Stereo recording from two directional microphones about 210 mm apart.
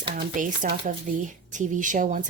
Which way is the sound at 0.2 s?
40° right (ahead or behind).